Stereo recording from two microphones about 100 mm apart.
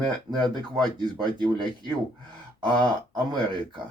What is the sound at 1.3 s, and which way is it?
Speech, 45° right (ahead or behind).